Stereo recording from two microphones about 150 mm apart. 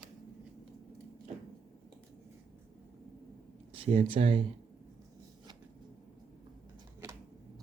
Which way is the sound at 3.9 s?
40° right (ahead or behind).